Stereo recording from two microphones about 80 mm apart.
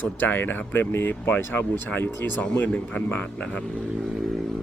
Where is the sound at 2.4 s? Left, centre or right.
Centre.